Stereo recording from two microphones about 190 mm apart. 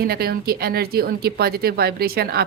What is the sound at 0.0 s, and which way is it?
A woman's voice, 55° right (ahead or behind).